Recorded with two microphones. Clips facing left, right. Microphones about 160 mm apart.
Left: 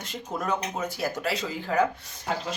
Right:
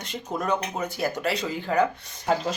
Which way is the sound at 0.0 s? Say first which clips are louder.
Right 2 dB; 5° left (ahead or behind).